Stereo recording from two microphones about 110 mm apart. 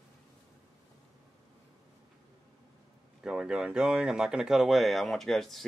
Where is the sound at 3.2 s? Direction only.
5° right (ahead or behind).